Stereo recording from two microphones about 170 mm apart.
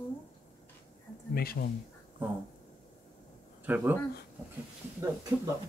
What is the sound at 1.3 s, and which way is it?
Speech, 65° left (ahead or behind).